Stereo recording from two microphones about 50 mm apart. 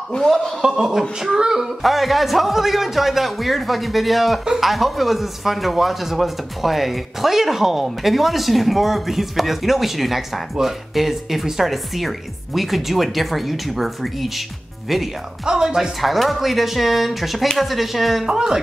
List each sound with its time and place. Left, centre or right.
0.1 s a man's voice: left
0.6 s speech: centre
15.4 s speech: centre
16.0 s speech: centre
18.3 s speech: centre